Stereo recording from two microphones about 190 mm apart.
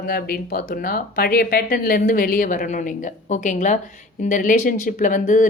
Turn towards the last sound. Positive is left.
turn(degrees=45)  # may be behind; listen again after turning